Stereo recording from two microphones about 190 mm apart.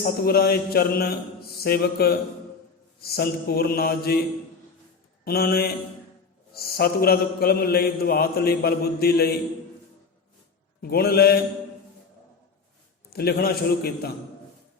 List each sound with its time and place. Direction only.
0.0 s mantra: 55° left (ahead or behind)
5.2 s mantra: 55° left (ahead or behind)
10.8 s mantra: 55° left (ahead or behind)
13.1 s mantra: 55° left (ahead or behind)